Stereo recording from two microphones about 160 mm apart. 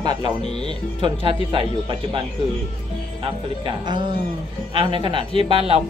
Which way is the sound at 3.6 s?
30° right (ahead or behind).